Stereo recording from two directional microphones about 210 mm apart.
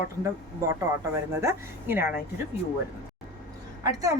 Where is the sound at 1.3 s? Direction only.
15° right (ahead or behind).